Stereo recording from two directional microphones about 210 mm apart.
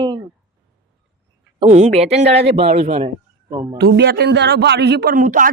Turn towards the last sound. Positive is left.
turn(degrees=-40)  # may be behind; listen again after turning